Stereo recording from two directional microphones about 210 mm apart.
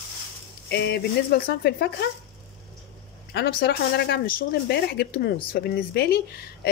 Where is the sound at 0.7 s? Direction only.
50° left (ahead or behind).